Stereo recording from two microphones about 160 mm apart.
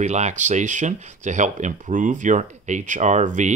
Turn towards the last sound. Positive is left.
turn(degrees=-50)  # may be behind; listen again after turning